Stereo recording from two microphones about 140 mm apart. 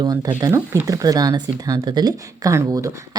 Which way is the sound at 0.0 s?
30° right (ahead or behind).